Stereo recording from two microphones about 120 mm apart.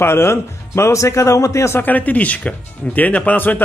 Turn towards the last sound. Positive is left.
turn(degrees=15)  # may be behind; listen again after turning